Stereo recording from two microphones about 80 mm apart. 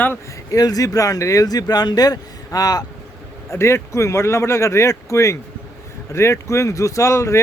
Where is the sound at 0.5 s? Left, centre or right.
Left.